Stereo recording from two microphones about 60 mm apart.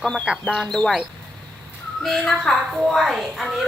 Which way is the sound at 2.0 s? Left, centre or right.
Centre.